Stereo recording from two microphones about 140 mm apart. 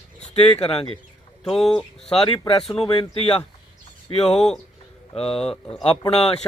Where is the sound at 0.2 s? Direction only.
45° left (ahead or behind).